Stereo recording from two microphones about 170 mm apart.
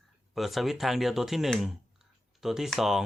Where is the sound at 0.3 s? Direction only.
Centre (ahead or behind).